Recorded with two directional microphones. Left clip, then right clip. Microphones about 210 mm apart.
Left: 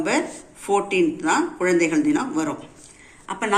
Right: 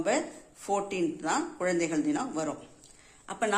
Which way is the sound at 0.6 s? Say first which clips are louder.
Left 10 dB; 55° right (ahead or behind).